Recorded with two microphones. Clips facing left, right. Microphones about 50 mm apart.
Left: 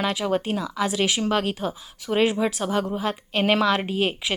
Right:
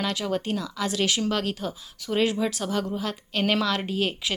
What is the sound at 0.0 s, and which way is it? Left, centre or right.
Speech, centre.